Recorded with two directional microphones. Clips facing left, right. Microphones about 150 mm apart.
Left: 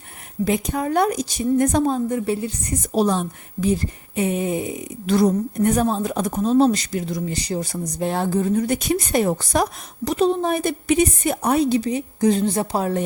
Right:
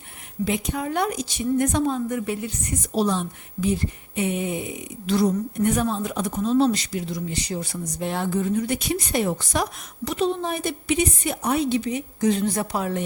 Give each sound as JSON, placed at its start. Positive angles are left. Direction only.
{"t": 0.4, "sound": "speech", "side_deg": 45}
{"t": 2.9, "sound": "speech", "side_deg": 45}